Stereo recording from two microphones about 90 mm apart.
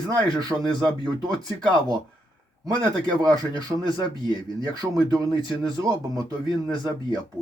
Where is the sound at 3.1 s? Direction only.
50° right (ahead or behind).